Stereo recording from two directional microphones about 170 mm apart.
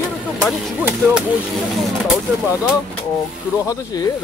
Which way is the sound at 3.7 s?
20° left (ahead or behind).